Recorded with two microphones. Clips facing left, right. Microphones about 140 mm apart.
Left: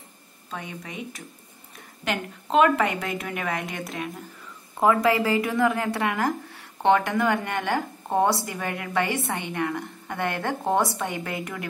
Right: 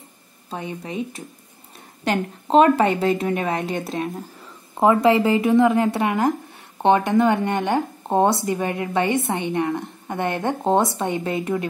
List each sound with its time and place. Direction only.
0.5 s a woman's voice: 30° right (ahead or behind)